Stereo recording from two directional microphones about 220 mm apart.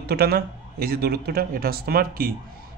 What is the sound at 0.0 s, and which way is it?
Speech, 45° right (ahead or behind).